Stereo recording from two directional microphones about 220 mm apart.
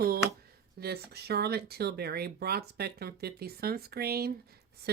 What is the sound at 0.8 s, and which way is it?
Speech, 45° right (ahead or behind).